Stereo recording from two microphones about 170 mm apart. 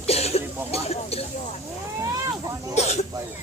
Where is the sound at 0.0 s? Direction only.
40° left (ahead or behind).